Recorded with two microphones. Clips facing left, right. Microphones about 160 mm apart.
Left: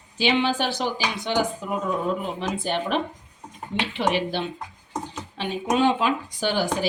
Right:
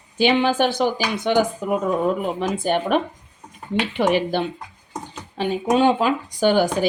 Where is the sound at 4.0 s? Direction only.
45° right (ahead or behind).